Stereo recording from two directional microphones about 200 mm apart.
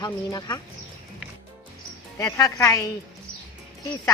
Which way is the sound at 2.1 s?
15° left (ahead or behind).